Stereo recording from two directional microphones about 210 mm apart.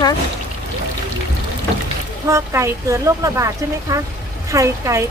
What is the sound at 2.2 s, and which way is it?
Speech, 15° right (ahead or behind).